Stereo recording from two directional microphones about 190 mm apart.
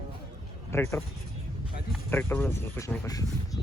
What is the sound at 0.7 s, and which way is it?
Speech, 15° left (ahead or behind).